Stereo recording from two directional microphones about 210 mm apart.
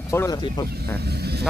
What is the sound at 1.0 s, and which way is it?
Speech, 50° right (ahead or behind).